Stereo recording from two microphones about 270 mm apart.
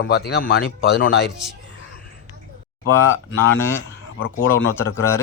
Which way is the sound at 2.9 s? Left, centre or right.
Centre.